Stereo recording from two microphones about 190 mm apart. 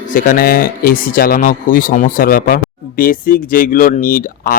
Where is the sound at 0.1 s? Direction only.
45° left (ahead or behind).